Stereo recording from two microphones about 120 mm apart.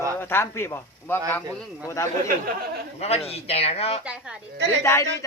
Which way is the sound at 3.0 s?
60° left (ahead or behind).